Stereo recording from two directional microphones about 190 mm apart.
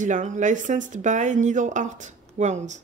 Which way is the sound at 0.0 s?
40° right (ahead or behind).